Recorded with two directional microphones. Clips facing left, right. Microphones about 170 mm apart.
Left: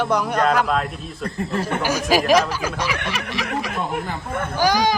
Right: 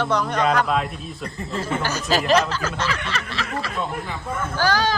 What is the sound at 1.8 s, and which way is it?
Speech, 10° left (ahead or behind).